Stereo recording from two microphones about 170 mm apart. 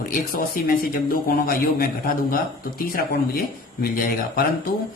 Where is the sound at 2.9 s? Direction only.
65° left (ahead or behind).